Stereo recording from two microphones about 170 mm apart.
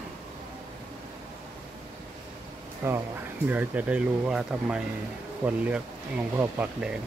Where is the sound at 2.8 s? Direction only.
15° right (ahead or behind).